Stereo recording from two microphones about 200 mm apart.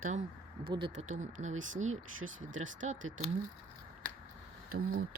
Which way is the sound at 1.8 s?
90° right.